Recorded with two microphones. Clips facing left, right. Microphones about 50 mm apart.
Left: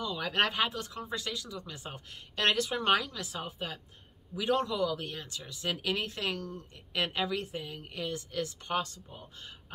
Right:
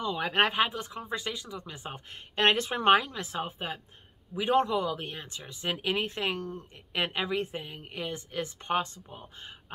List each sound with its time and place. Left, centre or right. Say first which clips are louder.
0.0 s speech: right 3 dB; right